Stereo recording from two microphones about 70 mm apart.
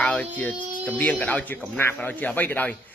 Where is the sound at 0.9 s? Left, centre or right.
Left.